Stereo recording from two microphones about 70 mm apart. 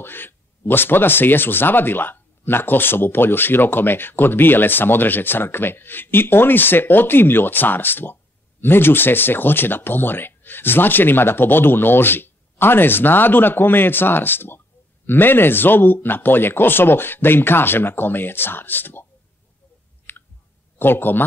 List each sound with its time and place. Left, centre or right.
0.0 s speech: left
20.1 s clicking: left
20.8 s speech: left